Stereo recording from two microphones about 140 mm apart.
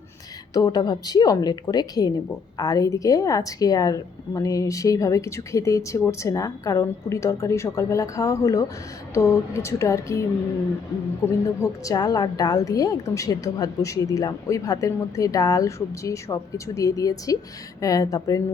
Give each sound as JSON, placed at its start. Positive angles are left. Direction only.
{"t": 0.5, "sound": "a woman's voice", "side_deg": 30}